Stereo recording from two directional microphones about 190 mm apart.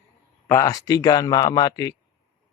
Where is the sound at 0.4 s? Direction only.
15° left (ahead or behind).